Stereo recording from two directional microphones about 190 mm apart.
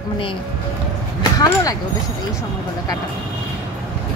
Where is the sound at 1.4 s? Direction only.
20° left (ahead or behind).